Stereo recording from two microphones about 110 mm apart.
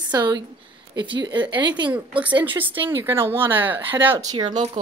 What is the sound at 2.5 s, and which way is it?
A woman's voice, 15° right (ahead or behind).